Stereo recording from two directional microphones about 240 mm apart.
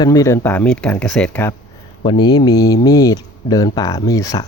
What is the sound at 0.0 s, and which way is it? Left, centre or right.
Speech, centre.